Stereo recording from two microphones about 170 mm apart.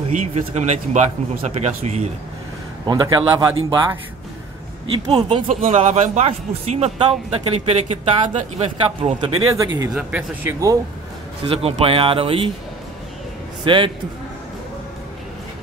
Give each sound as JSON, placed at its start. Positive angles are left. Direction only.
{"t": 0.1, "sound": "speech", "side_deg": -35}
{"t": 2.9, "sound": "speech", "side_deg": -25}
{"t": 5.0, "sound": "speech", "side_deg": -40}
{"t": 9.9, "sound": "speech", "side_deg": -10}
{"t": 11.4, "sound": "speech", "side_deg": -35}
{"t": 13.7, "sound": "speech", "side_deg": -30}